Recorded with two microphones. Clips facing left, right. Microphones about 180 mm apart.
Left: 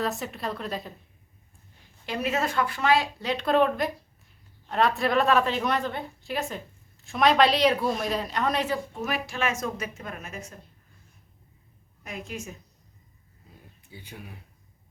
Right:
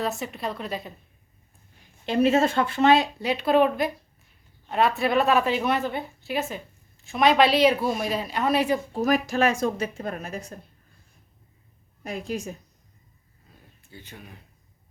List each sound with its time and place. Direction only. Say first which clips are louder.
0.0 s a woman's voice: right 1 dB; centre (ahead or behind)
2.0 s a woman's voice: right 8 dB; 25° right (ahead or behind)
3.2 s a woman's voice: right 2 dB; 10° right (ahead or behind)
8.9 s speech: right 8 dB; 40° right (ahead or behind)
12.0 s speech: right 6 dB; 35° right (ahead or behind)
13.9 s speech: left 1 dB; 10° left (ahead or behind)